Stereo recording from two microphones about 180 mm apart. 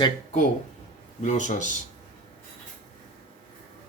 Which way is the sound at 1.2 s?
45° left (ahead or behind).